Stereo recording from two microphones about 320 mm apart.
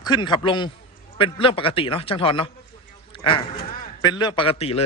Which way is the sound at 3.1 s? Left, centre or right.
Centre.